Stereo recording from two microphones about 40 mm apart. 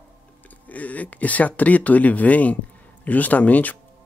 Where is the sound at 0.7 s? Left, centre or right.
Left.